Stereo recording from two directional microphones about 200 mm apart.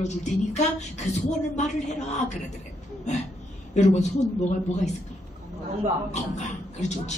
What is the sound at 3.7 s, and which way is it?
Speech, 35° left (ahead or behind).